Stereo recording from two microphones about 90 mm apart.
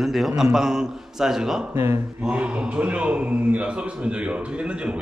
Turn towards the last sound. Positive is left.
turn(degrees=-15)  # may be behind; listen again after turning